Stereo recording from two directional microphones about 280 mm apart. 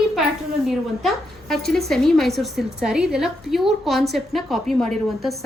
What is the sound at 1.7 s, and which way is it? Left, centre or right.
A woman's voice, centre.